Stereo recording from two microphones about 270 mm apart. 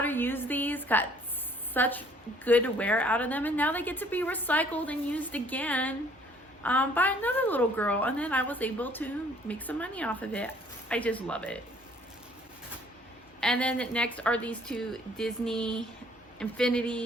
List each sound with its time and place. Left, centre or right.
0.0 s a sound: centre
1.7 s a woman's voice: centre
13.4 s a woman's voice: centre